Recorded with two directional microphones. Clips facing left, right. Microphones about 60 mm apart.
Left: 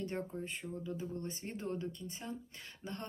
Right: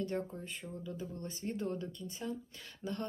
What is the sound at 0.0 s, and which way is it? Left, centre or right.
Speech, left.